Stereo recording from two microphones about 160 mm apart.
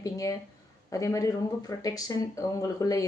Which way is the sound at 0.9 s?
20° left (ahead or behind).